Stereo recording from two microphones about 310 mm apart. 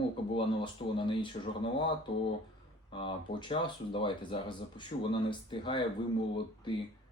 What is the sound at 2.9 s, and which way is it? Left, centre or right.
Speech, centre.